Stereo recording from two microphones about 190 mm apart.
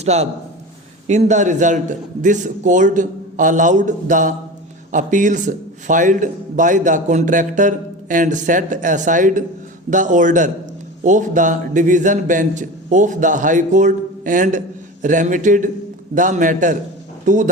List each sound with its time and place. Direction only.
0.0 s a man's voice: 35° right (ahead or behind)